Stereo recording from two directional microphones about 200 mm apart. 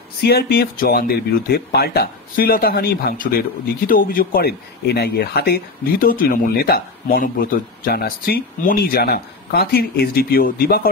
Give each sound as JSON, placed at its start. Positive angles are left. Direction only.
{"t": 0.2, "sound": "speech", "side_deg": 55}